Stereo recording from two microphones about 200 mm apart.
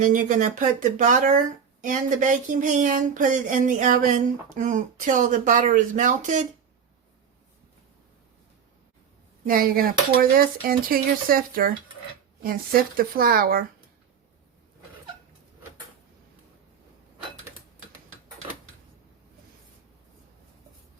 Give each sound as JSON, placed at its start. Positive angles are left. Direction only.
{"t": 0.0, "sound": "speech", "side_deg": -40}
{"t": 9.5, "sound": "speech", "side_deg": -45}